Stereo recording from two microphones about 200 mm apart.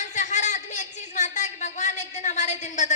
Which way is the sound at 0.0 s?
35° left (ahead or behind).